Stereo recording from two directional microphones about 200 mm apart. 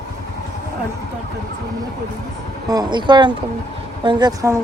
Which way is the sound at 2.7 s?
20° right (ahead or behind).